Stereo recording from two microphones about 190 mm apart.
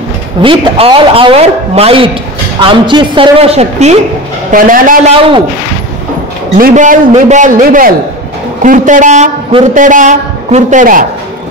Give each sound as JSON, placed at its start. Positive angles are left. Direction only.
{"t": 0.4, "sound": "a man's voice", "side_deg": -25}
{"t": 4.5, "sound": "a man's voice", "side_deg": -45}
{"t": 6.6, "sound": "a man's voice", "side_deg": -40}